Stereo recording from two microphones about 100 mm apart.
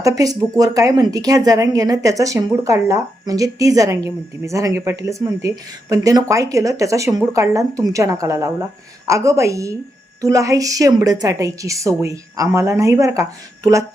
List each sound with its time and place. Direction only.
0.0 s speech: 35° right (ahead or behind)